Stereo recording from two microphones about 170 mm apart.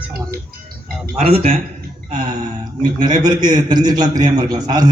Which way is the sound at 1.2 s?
35° right (ahead or behind).